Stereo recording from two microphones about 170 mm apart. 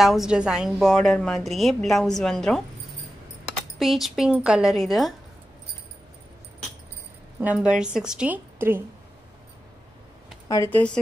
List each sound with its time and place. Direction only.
0.0 s a woman's voice: centre (ahead or behind)
3.8 s a woman's voice: centre (ahead or behind)
7.3 s a woman's voice: 10° right (ahead or behind)
10.5 s speech: 20° left (ahead or behind)